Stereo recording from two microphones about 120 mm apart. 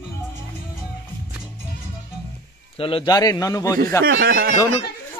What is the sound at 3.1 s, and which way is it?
Speech, 30° left (ahead or behind).